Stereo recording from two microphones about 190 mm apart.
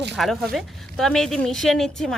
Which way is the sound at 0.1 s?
Centre (ahead or behind).